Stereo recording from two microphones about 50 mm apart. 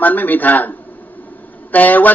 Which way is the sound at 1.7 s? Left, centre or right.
Left.